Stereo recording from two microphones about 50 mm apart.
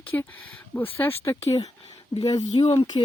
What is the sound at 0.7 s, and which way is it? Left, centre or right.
Speech, left.